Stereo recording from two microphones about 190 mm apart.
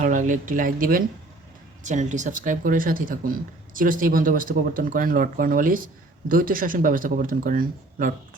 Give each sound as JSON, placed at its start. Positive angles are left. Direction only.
{"t": 0.0, "sound": "speech", "side_deg": -40}